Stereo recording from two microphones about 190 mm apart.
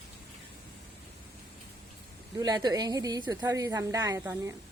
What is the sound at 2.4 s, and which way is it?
A woman's voice, 20° right (ahead or behind).